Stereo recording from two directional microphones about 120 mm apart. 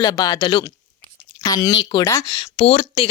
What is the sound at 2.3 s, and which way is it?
Speech, 45° left (ahead or behind).